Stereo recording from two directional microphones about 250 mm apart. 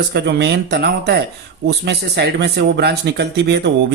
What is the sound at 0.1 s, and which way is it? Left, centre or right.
Speech, right.